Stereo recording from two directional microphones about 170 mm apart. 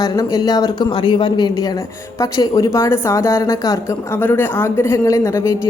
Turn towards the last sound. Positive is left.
turn(degrees=15)  # may be behind; listen again after turning